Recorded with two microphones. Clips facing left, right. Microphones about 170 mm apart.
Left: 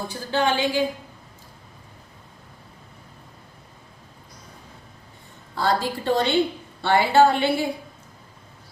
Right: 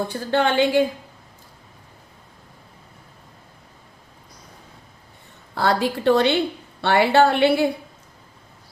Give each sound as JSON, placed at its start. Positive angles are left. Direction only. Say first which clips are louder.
{"t": 0.1, "sound": "a woman's voice", "louder": "left 1 dB", "side_deg": -60}
{"t": 5.5, "sound": "a woman's voice", "louder": "right 2 dB", "side_deg": -65}